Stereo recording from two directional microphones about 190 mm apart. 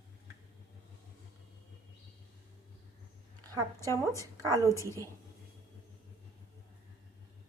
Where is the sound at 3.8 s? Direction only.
15° left (ahead or behind).